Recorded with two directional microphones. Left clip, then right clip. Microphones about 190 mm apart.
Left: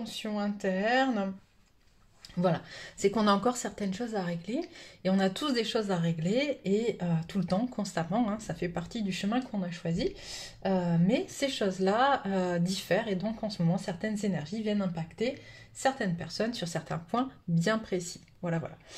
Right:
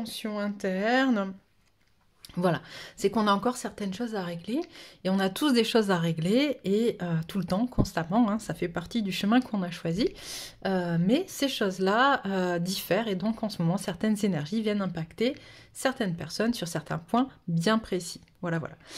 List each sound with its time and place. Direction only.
0.0 s speech: 45° right (ahead or behind)
2.3 s speech: 45° right (ahead or behind); by 18.7 s 30° right (ahead or behind)